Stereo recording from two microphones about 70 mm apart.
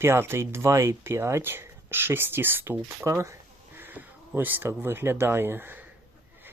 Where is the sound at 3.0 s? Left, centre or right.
Right.